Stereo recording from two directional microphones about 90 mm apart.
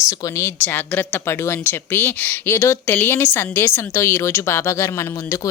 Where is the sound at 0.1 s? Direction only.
40° left (ahead or behind).